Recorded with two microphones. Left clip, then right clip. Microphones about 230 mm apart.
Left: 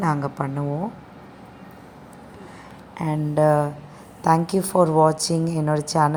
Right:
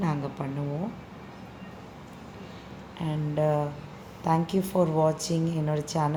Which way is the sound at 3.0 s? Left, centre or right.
Left.